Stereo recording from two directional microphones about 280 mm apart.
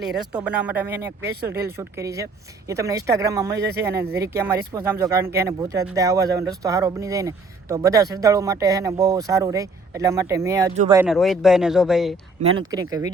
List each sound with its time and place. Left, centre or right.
0.4 s speech: centre
3.9 s speech: right
4.2 s speech: centre
11.0 s speech: centre
12.4 s speech: centre